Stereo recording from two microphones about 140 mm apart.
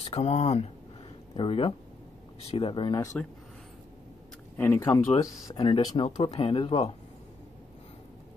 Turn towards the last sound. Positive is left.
turn(degrees=40)  # may be behind; listen again after turning